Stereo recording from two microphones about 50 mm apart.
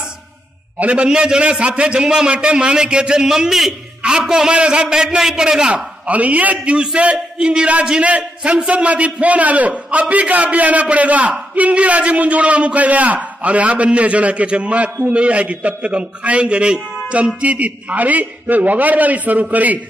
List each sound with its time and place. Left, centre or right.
0.7 s a man's voice: right
6.0 s a man's voice: right